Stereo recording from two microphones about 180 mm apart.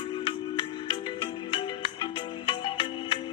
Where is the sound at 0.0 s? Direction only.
25° left (ahead or behind).